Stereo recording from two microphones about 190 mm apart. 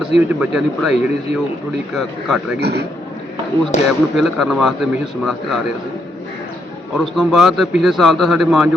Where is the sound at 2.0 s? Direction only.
Centre (ahead or behind).